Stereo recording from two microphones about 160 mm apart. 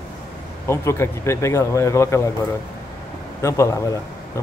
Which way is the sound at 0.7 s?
15° left (ahead or behind).